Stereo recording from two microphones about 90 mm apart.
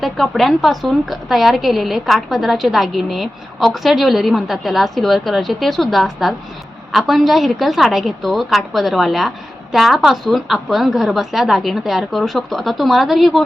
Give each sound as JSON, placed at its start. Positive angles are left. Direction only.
{"t": 0.0, "sound": "a woman's voice", "side_deg": 0}